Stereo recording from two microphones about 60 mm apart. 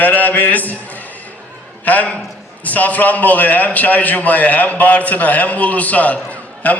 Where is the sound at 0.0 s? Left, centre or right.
Left.